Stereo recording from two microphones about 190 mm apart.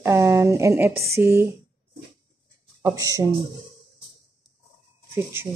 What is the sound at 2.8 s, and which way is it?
Speech, 15° right (ahead or behind).